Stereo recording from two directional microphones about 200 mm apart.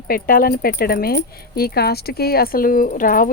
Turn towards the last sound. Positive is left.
turn(degrees=45)  # may be behind; listen again after turning